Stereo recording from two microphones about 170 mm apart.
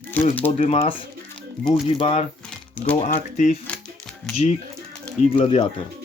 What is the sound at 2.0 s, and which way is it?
Speech, 30° left (ahead or behind).